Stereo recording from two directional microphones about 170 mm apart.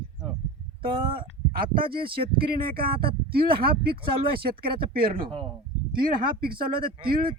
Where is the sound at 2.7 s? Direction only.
60° right (ahead or behind).